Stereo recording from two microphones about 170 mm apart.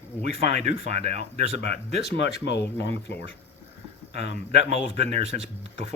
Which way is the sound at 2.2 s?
90° left.